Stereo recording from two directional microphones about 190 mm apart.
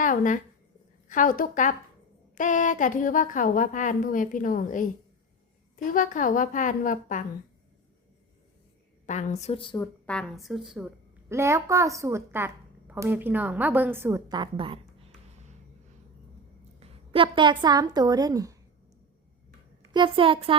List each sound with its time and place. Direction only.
0.0 s a woman's voice: 45° left (ahead or behind)
9.0 s a woman's voice: 40° left (ahead or behind); by 9.9 s 25° left (ahead or behind)
10.1 s a woman's voice: 5° left (ahead or behind)
11.3 s a woman's voice: 15° right (ahead or behind)
16.8 s a woman's voice: 30° right (ahead or behind)
19.9 s a woman's voice: 25° right (ahead or behind)